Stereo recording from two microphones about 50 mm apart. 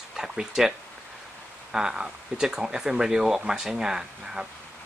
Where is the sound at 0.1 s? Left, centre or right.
Centre.